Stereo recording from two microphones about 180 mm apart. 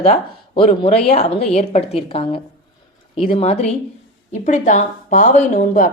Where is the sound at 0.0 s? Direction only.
30° left (ahead or behind).